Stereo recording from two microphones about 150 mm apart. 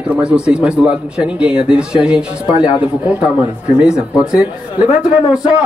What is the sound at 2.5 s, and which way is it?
Speech, 35° left (ahead or behind).